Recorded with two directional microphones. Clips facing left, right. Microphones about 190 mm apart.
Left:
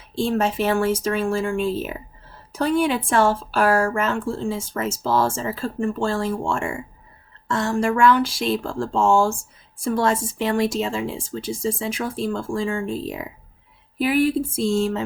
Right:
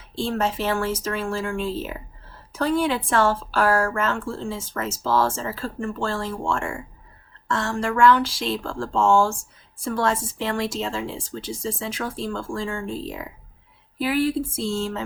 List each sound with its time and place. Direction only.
0.2 s a woman's voice: 15° left (ahead or behind)